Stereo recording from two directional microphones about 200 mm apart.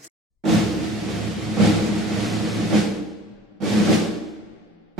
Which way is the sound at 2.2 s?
Centre (ahead or behind).